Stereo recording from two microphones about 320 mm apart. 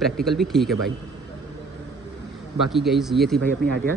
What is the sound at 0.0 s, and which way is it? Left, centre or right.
Speech, centre.